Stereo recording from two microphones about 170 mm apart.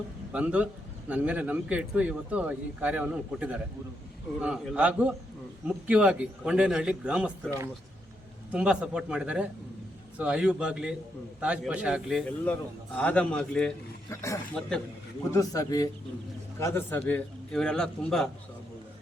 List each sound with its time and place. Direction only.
0.3 s a man's voice: 10° right (ahead or behind)
8.5 s a man's voice: 5° right (ahead or behind)
13.0 s a man's voice: 10° left (ahead or behind)
14.1 s a man's voice: 15° left (ahead or behind)
14.6 s a man's voice: centre (ahead or behind)
15.3 s a man's voice: 20° left (ahead or behind); by 18.3 s 5° left (ahead or behind)